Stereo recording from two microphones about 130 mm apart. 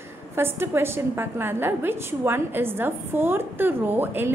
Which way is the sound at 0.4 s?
20° right (ahead or behind).